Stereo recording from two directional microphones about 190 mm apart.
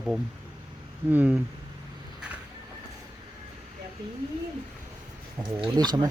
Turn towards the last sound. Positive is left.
turn(degrees=-20)  # may be behind; listen again after turning